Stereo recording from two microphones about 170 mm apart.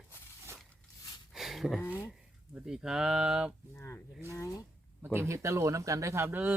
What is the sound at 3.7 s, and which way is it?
Speech, 15° left (ahead or behind).